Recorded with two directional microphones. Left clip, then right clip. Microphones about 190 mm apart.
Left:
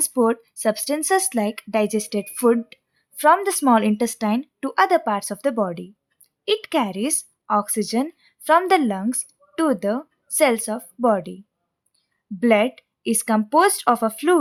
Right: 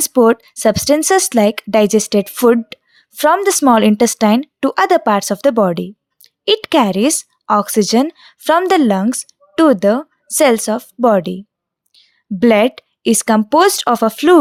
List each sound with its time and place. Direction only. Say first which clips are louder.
0.0 s a woman's voice: right 9 dB; 45° right (ahead or behind)